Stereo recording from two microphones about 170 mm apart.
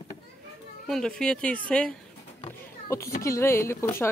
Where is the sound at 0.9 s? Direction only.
5° left (ahead or behind).